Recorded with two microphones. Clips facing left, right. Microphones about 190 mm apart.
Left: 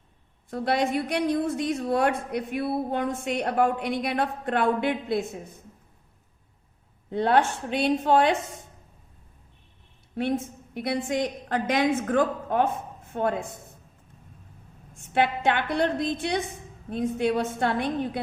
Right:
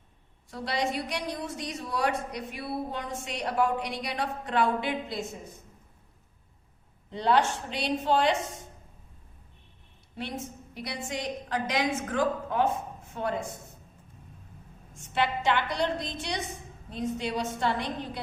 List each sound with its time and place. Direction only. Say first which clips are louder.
0.5 s a woman's voice: left 6 dB; 55° left (ahead or behind)
7.1 s a woman's voice: left 3 dB; 55° left (ahead or behind)
10.2 s a woman's voice: left 9 dB; 55° left (ahead or behind)
14.9 s a woman's voice: left 4 dB; 55° left (ahead or behind)